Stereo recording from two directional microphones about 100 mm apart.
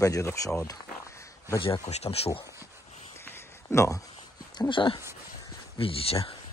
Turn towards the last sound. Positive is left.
turn(degrees=70)  # may be behind; listen again after turning